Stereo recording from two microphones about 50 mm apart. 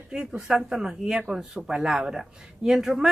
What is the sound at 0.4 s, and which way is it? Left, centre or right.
A woman's voice, centre.